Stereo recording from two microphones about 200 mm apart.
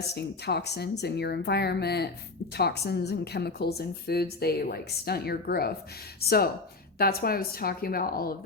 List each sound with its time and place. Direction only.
0.1 s speech: 55° left (ahead or behind)